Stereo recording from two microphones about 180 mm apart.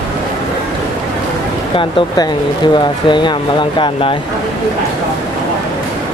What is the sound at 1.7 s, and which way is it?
Speech, 25° left (ahead or behind).